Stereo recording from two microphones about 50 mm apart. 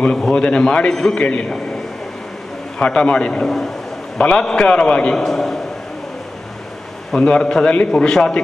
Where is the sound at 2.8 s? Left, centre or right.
Centre.